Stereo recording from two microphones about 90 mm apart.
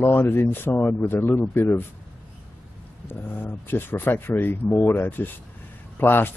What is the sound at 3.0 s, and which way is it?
Speech, 20° left (ahead or behind).